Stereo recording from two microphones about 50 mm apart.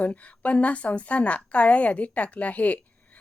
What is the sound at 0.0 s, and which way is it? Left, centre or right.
Speech, left.